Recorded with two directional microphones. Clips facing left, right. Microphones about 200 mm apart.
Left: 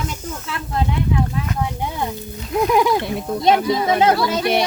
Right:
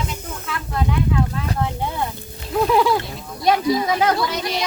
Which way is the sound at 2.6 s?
15° left (ahead or behind).